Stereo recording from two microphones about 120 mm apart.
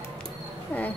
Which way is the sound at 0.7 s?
10° left (ahead or behind).